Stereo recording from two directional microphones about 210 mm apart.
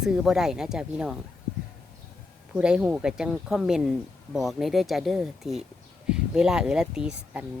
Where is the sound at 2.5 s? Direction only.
5° right (ahead or behind).